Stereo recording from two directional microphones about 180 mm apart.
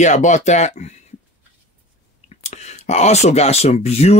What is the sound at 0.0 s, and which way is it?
Speech, 40° left (ahead or behind).